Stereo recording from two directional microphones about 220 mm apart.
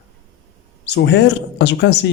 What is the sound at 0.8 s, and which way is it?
Speech, 50° left (ahead or behind).